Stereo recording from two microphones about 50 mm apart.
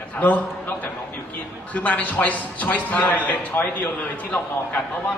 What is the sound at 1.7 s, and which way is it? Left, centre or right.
A man's voice, left.